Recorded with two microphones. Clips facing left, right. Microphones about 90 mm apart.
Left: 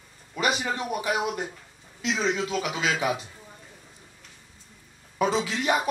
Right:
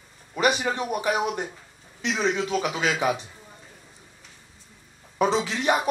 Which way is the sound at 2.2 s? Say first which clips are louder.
Right 3 dB; 25° right (ahead or behind).